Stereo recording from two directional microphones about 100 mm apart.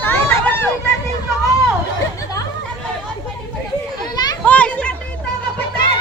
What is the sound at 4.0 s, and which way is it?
Children playing, 45° left (ahead or behind).